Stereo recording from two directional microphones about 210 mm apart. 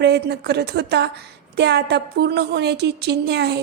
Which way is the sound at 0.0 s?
50° right (ahead or behind).